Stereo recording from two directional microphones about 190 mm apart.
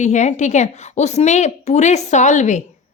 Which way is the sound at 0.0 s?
40° left (ahead or behind).